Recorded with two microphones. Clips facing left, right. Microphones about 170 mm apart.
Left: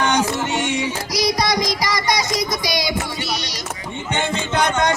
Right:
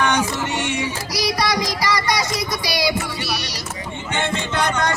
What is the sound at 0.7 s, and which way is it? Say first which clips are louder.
Child singing: left 2 dB; 20° left (ahead or behind).